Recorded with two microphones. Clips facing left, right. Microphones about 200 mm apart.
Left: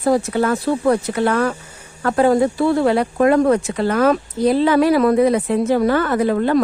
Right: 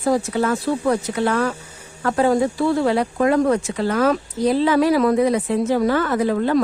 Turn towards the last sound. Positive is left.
turn(degrees=55)  # may be behind; listen again after turning